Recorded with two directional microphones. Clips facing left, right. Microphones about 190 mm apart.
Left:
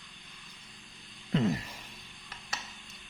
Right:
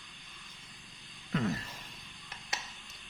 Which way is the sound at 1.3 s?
20° left (ahead or behind).